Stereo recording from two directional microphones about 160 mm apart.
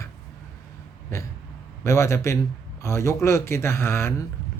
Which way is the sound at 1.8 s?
15° left (ahead or behind).